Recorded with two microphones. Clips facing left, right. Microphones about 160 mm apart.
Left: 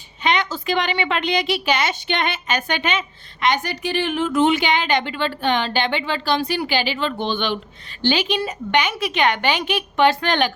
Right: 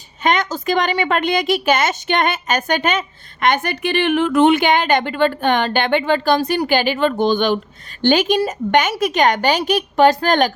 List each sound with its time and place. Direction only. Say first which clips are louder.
0.2 s a woman's voice: right 3 dB; 45° right (ahead or behind)